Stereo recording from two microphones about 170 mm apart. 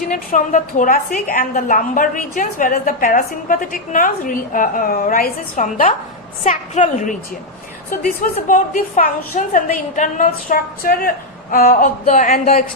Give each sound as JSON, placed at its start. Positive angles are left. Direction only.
{"t": 0.1, "sound": "a woman's voice", "side_deg": 50}
{"t": 8.2, "sound": "a woman's voice", "side_deg": 50}